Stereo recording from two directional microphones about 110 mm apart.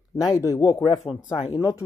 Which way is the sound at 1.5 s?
30° left (ahead or behind).